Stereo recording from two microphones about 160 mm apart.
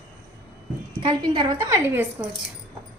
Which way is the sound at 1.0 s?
30° right (ahead or behind).